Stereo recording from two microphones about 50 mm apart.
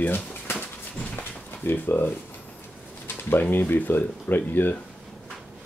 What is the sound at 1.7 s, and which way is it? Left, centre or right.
Speech, left.